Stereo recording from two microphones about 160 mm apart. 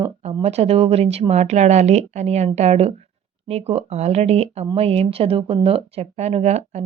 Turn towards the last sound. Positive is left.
turn(degrees=-45)  # may be behind; listen again after turning